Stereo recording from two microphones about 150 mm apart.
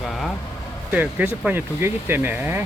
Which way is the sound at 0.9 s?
10° right (ahead or behind).